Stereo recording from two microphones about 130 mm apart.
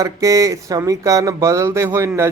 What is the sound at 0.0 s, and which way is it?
Speech, 25° right (ahead or behind).